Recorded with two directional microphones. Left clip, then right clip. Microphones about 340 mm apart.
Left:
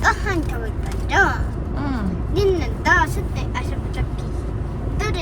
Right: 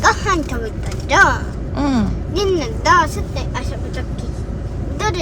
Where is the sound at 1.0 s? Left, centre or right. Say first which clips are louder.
Right 5 dB; centre.